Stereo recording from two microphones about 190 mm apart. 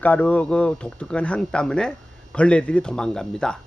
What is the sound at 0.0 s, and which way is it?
Speech, 10° left (ahead or behind).